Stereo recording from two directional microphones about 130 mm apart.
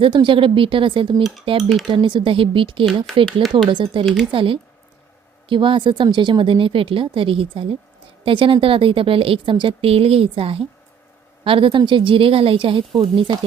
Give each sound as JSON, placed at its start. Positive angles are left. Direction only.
{"t": 0.0, "sound": "speech", "side_deg": -35}
{"t": 3.1, "sound": "speech", "side_deg": 0}
{"t": 3.7, "sound": "speech", "side_deg": -35}
{"t": 4.0, "sound": "speech", "side_deg": 0}
{"t": 4.3, "sound": "speech", "side_deg": -40}